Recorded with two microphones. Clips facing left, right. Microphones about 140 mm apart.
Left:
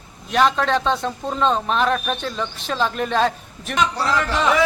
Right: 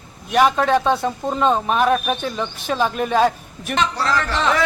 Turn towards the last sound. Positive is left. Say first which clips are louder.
# left 1 dB
turn(degrees=10)  # may be behind; listen again after turning